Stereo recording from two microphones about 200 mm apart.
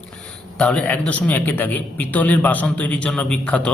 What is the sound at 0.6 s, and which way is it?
A man's voice, 5° left (ahead or behind).